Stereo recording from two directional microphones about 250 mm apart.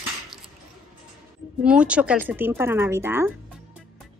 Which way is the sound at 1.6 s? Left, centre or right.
Centre.